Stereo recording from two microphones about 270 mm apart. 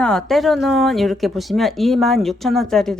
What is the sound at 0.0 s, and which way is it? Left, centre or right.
Speech, centre.